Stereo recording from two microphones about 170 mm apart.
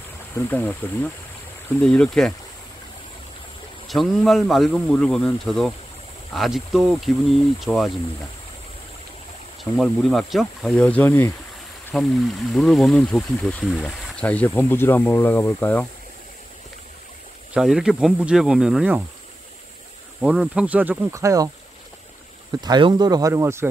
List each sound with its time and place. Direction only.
0.5 s speech: 10° left (ahead or behind)
3.8 s speech: centre (ahead or behind)
9.8 s speech: centre (ahead or behind)
17.6 s speech: centre (ahead or behind)
20.2 s speech: 5° right (ahead or behind)
22.6 s speech: 25° right (ahead or behind)